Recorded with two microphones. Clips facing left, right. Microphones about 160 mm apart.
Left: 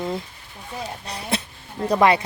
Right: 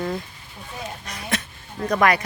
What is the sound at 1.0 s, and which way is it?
Speech, 35° left (ahead or behind).